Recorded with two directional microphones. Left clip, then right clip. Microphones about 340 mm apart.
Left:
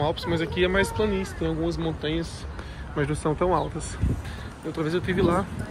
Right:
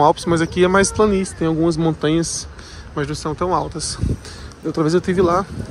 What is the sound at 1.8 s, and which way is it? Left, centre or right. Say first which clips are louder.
Speech: right 10 dB; right.